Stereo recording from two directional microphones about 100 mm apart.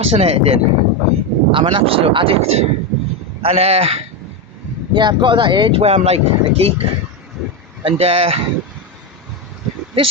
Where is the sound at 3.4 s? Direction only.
75° right (ahead or behind).